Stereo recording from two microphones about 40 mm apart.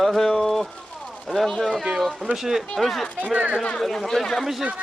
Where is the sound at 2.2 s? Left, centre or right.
Centre.